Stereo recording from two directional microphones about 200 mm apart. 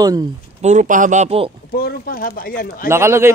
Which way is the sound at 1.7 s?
50° left (ahead or behind).